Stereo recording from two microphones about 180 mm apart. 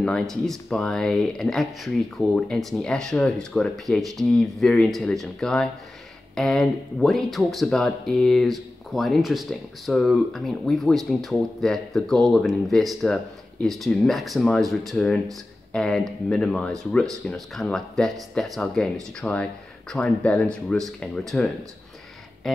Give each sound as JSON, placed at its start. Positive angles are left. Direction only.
{"t": 0.0, "sound": "speech", "side_deg": 5}